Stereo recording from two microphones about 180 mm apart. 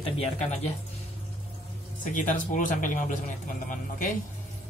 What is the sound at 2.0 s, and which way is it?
Speech, 45° left (ahead or behind).